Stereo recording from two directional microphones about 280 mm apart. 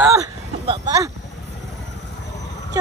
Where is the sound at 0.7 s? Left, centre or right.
Centre.